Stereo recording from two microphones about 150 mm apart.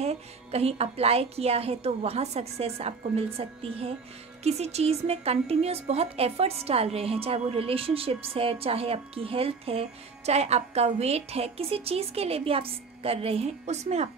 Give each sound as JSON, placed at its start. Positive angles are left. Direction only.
{"t": 0.0, "sound": "a woman's voice", "side_deg": -45}